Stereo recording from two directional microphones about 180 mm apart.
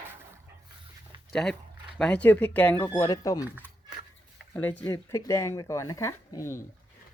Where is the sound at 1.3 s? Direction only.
5° left (ahead or behind); by 3.4 s 20° left (ahead or behind).